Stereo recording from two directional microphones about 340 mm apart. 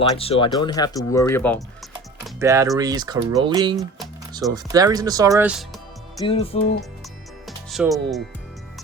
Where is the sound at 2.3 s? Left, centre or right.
Centre.